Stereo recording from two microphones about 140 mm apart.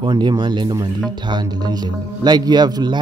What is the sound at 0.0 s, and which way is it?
Speech, 30° right (ahead or behind).